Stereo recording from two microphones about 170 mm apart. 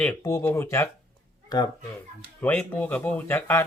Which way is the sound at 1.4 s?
25° left (ahead or behind).